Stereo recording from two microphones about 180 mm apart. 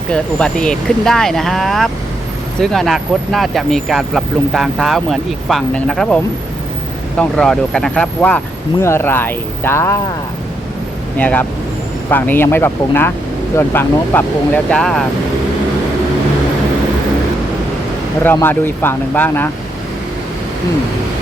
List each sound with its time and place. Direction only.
0.1 s speech: 5° left (ahead or behind)
7.2 s speech: 5° left (ahead or behind)
11.2 s speech: 10° left (ahead or behind)
18.2 s speech: 10° left (ahead or behind)